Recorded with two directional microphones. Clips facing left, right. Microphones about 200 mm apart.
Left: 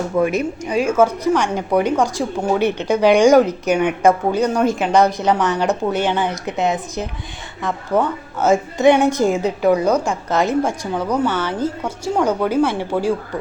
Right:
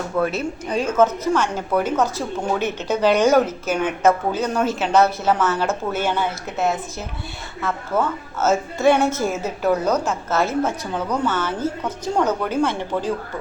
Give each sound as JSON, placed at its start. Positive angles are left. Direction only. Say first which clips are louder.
{"t": 0.2, "sound": "a woman's voice", "louder": "left 4 dB", "side_deg": 15}